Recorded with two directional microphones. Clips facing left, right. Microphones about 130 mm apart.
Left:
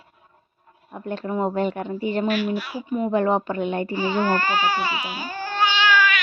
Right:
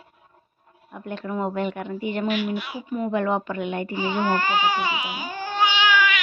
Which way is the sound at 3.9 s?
15° right (ahead or behind).